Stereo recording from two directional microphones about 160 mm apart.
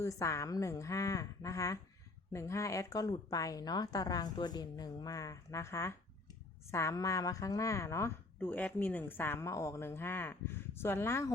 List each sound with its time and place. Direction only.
0.0 s a woman's voice: 20° left (ahead or behind)